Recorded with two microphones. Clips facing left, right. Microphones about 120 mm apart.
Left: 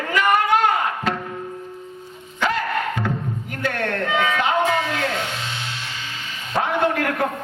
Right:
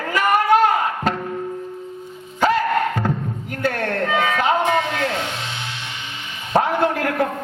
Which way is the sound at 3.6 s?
40° right (ahead or behind).